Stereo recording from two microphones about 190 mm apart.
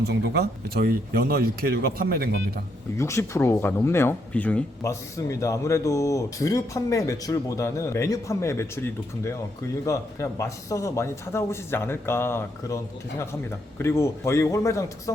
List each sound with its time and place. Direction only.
0.0 s speech: 60° right (ahead or behind)
3.0 s speech: 15° left (ahead or behind)